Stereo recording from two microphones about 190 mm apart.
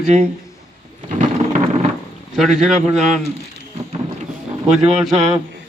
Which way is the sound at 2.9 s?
40° right (ahead or behind).